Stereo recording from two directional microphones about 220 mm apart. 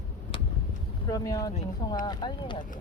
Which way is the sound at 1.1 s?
15° left (ahead or behind).